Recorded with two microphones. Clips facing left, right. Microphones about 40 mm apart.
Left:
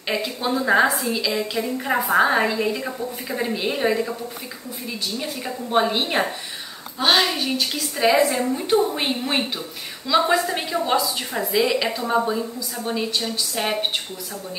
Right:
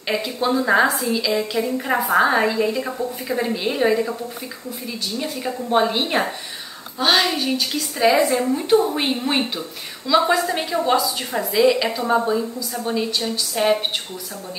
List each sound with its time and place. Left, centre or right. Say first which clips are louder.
0.1 s a woman's voice: right 3 dB; centre
5.7 s a woman's voice: right 1 dB; centre
12.0 s a woman's voice: right 2 dB; centre